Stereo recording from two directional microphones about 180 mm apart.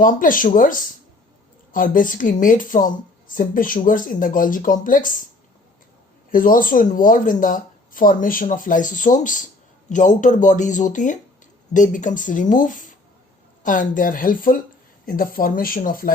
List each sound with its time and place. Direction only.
0.0 s speech: 50° left (ahead or behind)
6.3 s speech: 50° left (ahead or behind)